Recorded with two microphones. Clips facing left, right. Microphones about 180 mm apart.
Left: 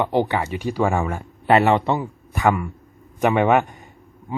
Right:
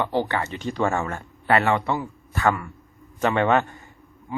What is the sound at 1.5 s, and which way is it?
A man's voice, 20° left (ahead or behind).